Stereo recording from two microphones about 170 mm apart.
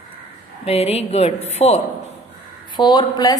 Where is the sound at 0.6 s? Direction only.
35° left (ahead or behind).